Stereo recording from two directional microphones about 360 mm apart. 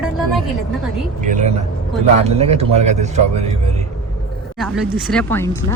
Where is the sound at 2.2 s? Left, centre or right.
Centre.